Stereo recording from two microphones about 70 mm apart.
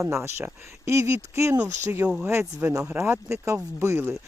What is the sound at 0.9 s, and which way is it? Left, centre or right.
Speech, right.